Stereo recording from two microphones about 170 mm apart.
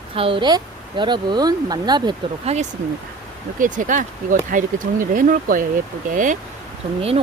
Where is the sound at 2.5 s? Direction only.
40° right (ahead or behind).